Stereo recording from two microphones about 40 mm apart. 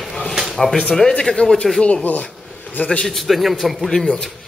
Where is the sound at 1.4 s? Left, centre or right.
Left.